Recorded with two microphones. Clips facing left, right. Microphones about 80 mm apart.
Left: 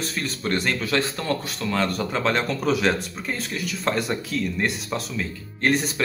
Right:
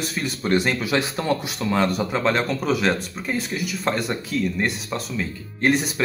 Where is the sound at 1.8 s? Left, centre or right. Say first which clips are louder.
Right 2 dB; centre.